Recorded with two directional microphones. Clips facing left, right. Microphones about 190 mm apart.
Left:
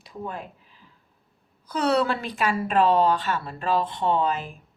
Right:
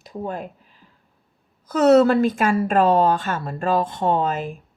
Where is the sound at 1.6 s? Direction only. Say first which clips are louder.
Right 9 dB; 45° right (ahead or behind).